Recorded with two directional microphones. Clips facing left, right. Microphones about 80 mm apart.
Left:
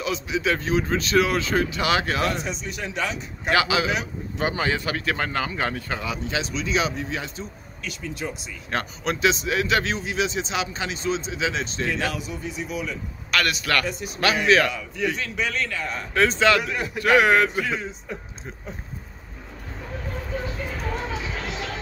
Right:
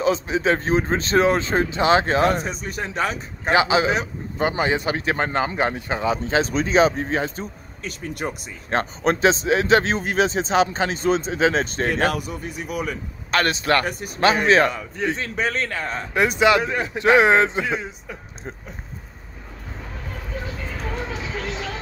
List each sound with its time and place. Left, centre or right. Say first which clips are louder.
0.0 s speech: right 5 dB; right
3.4 s a man's voice: right 4 dB; right
4.4 s speech: right 3 dB; right
8.6 s speech: right 6 dB; right
13.3 s speech: right 4 dB; right
13.8 s speech: right 2 dB; right
14.2 s speech: right 3 dB; right
16.1 s a man's voice: right 2 dB; centre